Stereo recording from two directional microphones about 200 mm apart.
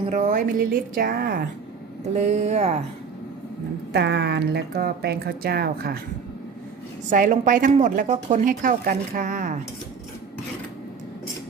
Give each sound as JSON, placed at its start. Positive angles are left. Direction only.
{"t": 0.1, "sound": "speech", "side_deg": -40}
{"t": 2.1, "sound": "a woman's voice", "side_deg": -35}
{"t": 3.9, "sound": "speech", "side_deg": -55}
{"t": 7.1, "sound": "a woman's voice", "side_deg": -40}